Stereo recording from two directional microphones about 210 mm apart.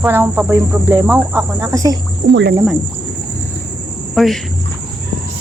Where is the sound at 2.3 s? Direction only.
55° right (ahead or behind).